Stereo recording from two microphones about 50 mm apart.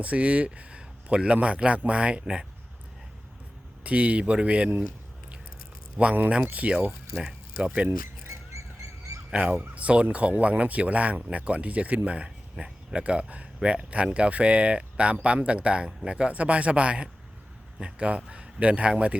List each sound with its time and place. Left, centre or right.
0.0 s speech: right
3.8 s speech: right
6.0 s speech: right
9.3 s a man's voice: right